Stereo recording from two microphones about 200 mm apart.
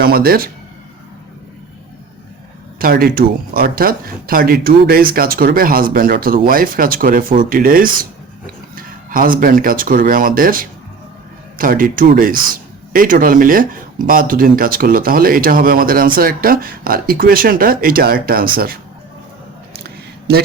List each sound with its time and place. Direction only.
0.0 s speech: 50° right (ahead or behind)
2.7 s speech: 45° right (ahead or behind)
19.8 s a sound: 50° right (ahead or behind)